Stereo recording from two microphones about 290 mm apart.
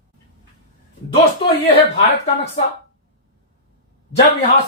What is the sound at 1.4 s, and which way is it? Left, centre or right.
Speech, centre.